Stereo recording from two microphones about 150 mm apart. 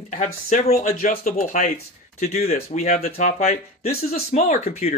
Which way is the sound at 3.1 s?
65° left (ahead or behind).